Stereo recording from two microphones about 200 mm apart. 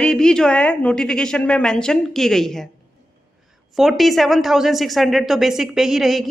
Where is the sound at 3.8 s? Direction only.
Centre (ahead or behind).